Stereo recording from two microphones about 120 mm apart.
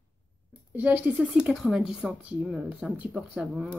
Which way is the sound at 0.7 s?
15° right (ahead or behind).